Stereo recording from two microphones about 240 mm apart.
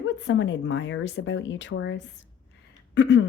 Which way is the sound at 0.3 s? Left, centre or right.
Left.